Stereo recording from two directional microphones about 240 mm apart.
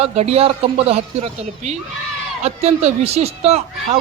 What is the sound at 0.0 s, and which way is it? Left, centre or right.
Speech, right.